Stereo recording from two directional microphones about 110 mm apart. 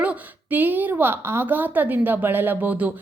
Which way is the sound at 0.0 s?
15° right (ahead or behind).